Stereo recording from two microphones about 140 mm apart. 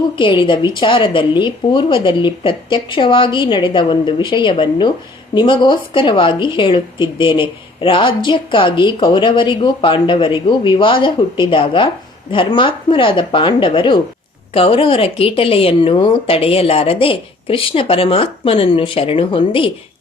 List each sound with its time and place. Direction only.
0.2 s a woman's voice: 35° left (ahead or behind)